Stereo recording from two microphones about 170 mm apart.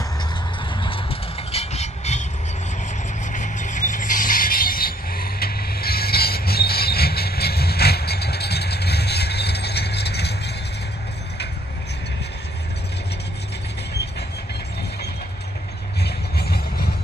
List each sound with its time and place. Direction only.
0.7 s vehicle: 30° left (ahead or behind)
3.3 s a sound: 45° left (ahead or behind); by 10.5 s 75° left (ahead or behind)
16.0 s vehicle: 75° left (ahead or behind)